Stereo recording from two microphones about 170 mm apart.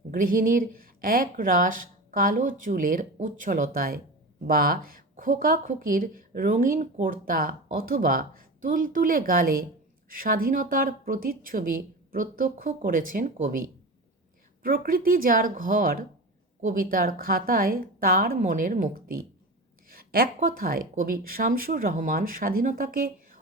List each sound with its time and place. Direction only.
0.1 s speech: 55° right (ahead or behind)